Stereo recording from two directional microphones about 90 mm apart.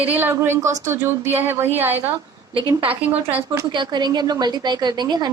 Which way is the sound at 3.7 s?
55° right (ahead or behind).